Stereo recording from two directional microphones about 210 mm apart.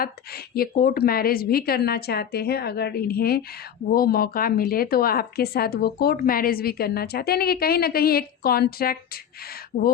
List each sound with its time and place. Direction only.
0.0 s speech: 45° left (ahead or behind)